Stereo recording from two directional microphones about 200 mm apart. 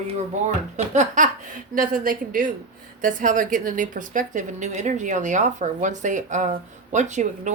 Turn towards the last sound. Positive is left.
turn(degrees=-35)  # may be behind; listen again after turning